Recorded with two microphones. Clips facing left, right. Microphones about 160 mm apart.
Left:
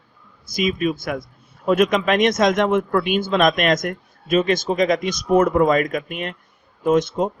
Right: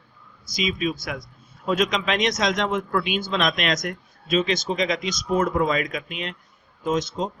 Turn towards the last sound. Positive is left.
turn(degrees=60)  # may be behind; listen again after turning